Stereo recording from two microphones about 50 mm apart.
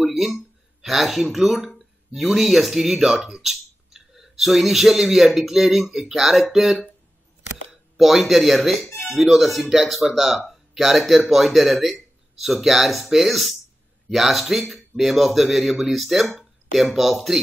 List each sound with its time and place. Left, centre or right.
0.0 s speech: centre
8.0 s speech: centre